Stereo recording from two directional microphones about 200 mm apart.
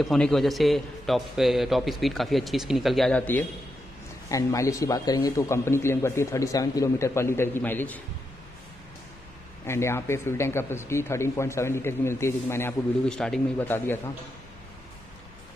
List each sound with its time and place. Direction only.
0.0 s a man's voice: centre (ahead or behind)
9.7 s speech: 15° left (ahead or behind)